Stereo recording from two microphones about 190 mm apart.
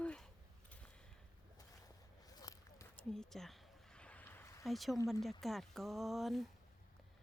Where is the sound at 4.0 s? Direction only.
5° left (ahead or behind).